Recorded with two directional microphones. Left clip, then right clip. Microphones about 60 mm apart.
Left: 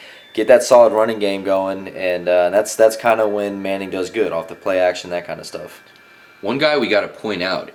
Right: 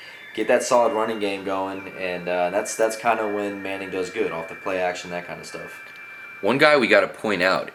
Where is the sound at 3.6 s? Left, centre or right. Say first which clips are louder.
Left 7 dB; left.